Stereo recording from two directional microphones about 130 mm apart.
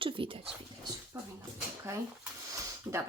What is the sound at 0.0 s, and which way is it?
Dog, 40° right (ahead or behind).